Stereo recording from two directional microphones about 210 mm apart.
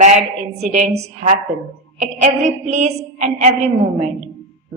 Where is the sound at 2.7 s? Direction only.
35° right (ahead or behind).